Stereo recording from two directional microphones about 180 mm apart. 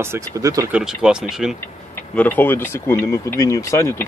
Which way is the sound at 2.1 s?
10° left (ahead or behind).